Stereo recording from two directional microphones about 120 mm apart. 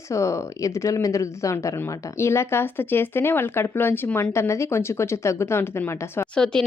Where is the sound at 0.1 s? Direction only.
25° left (ahead or behind).